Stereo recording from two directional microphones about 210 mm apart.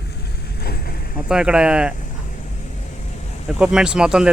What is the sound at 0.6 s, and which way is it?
Vehicle, 45° left (ahead or behind).